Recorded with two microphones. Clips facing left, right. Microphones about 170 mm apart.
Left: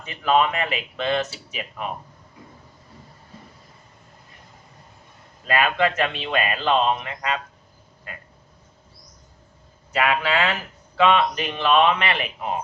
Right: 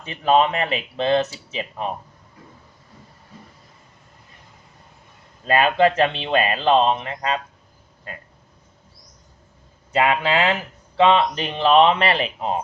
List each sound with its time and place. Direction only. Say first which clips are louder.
0.0 s speech: right 2 dB; 25° right (ahead or behind)
5.5 s speech: right 4 dB; 30° right (ahead or behind)
9.9 s speech: right 3 dB; 25° right (ahead or behind)